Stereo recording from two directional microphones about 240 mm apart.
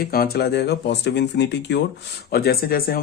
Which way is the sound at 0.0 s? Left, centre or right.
Left.